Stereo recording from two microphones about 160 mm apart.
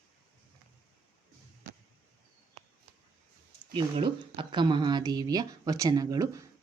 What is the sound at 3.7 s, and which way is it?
Speech, 30° right (ahead or behind).